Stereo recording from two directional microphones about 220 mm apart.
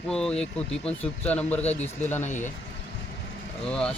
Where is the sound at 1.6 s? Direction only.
30° left (ahead or behind).